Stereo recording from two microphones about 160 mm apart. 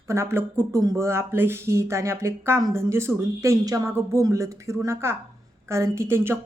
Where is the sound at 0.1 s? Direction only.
15° right (ahead or behind).